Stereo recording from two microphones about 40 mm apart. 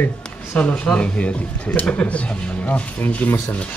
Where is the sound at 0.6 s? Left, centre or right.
Left.